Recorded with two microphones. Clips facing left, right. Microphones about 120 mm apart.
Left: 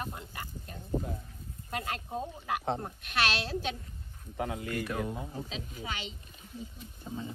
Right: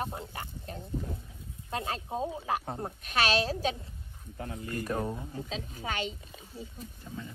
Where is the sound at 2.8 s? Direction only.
40° right (ahead or behind).